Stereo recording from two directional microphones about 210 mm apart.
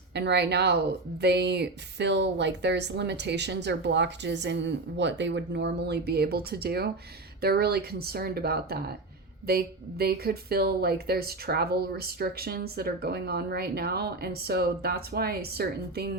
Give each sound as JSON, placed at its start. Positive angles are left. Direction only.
{"t": 0.1, "sound": "speech", "side_deg": -55}